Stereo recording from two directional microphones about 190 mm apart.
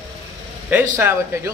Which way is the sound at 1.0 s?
10° right (ahead or behind).